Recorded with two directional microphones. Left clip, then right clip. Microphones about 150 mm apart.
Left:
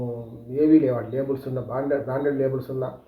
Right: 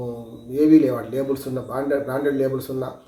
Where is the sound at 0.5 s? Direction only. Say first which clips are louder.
Right 2 dB; 15° right (ahead or behind).